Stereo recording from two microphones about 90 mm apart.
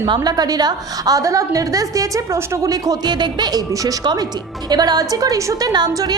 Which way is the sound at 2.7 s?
50° right (ahead or behind).